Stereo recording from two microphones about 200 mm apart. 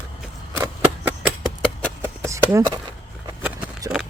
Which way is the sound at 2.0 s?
15° right (ahead or behind).